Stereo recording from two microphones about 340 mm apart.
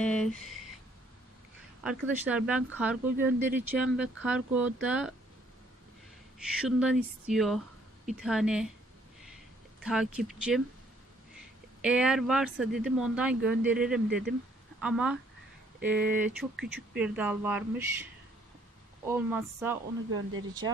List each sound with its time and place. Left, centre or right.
0.0 s speech: centre
1.8 s speech: centre
6.4 s speech: centre
9.8 s speech: centre
11.8 s speech: centre
19.0 s a woman's voice: centre
20.1 s speech: right